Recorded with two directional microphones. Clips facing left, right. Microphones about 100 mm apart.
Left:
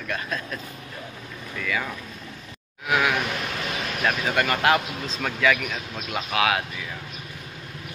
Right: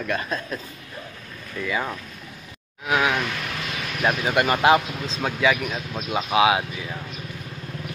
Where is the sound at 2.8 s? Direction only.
20° right (ahead or behind).